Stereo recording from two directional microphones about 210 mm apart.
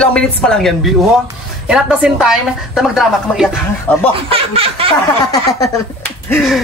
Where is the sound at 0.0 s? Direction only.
5° left (ahead or behind).